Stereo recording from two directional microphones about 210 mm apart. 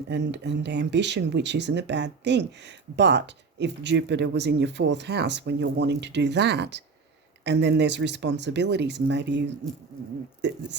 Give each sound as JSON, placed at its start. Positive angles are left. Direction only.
{"t": 0.1, "sound": "speech", "side_deg": -55}
{"t": 10.4, "sound": "speech", "side_deg": -55}